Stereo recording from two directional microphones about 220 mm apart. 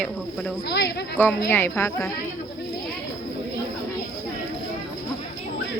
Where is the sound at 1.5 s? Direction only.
10° left (ahead or behind).